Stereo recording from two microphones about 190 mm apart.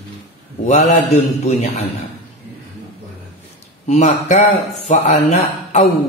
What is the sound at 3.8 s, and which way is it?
Speech, 40° left (ahead or behind).